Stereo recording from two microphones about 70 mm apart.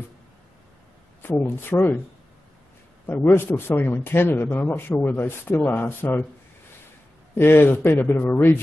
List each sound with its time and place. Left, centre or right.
1.4 s a man's voice: left
3.1 s a man's voice: left
7.3 s a man's voice: left